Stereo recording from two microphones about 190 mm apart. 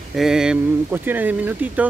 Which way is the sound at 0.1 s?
Centre (ahead or behind).